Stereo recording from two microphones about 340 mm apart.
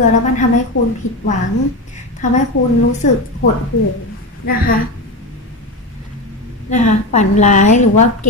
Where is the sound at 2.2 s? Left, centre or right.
Left.